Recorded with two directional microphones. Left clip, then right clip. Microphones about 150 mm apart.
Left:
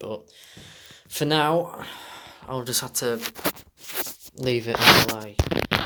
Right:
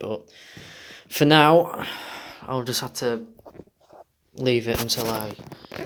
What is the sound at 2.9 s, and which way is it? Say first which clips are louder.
Speech: right 1 dB; 10° right (ahead or behind).